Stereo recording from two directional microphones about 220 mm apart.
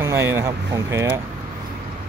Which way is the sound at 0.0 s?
10° right (ahead or behind).